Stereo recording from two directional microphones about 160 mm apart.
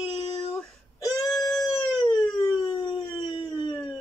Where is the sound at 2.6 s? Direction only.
35° left (ahead or behind).